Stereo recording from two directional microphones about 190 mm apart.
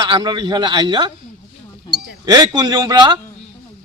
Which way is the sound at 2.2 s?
20° right (ahead or behind).